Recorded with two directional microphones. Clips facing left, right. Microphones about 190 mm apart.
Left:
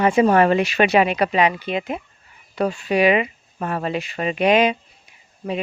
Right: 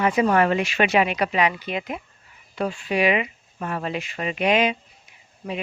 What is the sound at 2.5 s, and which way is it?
Speech, 40° left (ahead or behind).